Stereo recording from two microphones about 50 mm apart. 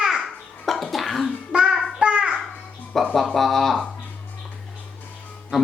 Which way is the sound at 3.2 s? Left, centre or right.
Centre.